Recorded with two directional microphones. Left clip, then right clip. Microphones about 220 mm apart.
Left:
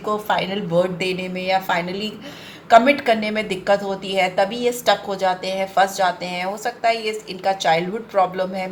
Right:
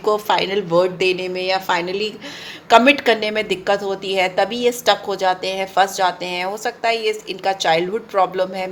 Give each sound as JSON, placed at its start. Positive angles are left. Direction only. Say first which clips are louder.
{"t": 0.0, "sound": "a woman's voice", "louder": "right 4 dB", "side_deg": -50}